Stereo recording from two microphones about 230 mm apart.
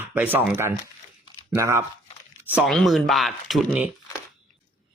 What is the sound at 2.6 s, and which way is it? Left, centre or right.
Speech, centre.